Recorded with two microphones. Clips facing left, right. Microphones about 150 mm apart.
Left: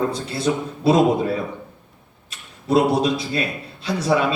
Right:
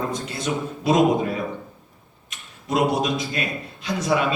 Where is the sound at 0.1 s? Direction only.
30° left (ahead or behind).